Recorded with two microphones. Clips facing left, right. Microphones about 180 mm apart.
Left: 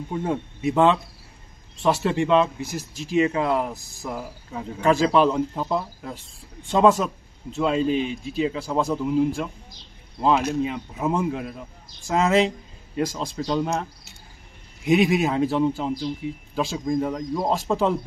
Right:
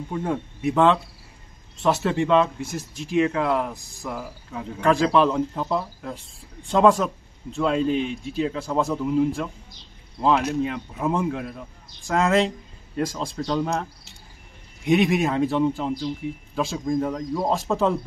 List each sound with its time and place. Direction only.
0.1 s speech: 20° left (ahead or behind)
1.8 s a man's voice: centre (ahead or behind)
3.2 s speech: 15° left (ahead or behind)
4.0 s cricket: 15° left (ahead or behind)
4.8 s a man's voice: 10° left (ahead or behind)
14.9 s a man's voice: 5° left (ahead or behind)